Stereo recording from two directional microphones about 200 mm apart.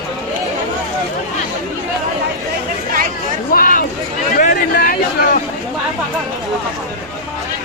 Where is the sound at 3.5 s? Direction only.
45° left (ahead or behind).